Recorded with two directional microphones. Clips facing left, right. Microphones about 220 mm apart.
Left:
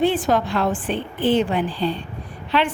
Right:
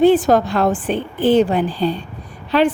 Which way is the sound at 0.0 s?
40° right (ahead or behind).